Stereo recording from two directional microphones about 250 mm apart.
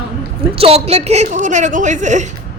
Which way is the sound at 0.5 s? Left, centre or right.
Right.